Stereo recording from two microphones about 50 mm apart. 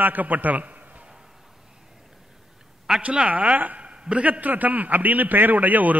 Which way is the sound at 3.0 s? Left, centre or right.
Right.